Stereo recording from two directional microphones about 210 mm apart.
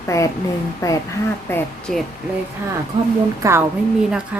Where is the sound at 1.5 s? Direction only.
5° left (ahead or behind).